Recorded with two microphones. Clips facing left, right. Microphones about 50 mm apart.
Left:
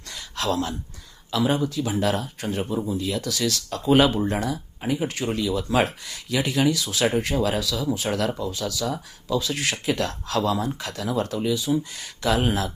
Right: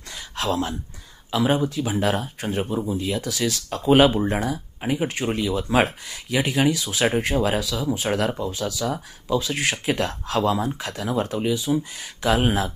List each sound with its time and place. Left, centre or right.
0.3 s speech: centre
11.6 s speech: centre